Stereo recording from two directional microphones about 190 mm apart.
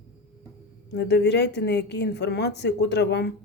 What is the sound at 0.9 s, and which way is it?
A woman's voice, 60° left (ahead or behind).